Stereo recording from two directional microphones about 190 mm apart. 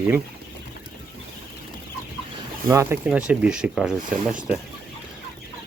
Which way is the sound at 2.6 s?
15° right (ahead or behind).